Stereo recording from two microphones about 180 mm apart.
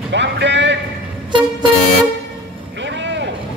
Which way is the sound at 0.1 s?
80° right.